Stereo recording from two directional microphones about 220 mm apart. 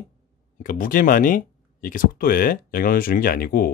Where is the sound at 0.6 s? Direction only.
40° left (ahead or behind).